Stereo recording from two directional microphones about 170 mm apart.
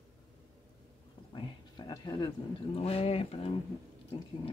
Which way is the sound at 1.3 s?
25° left (ahead or behind).